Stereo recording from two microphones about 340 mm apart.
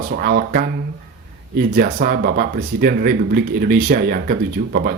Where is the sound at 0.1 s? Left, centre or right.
Right.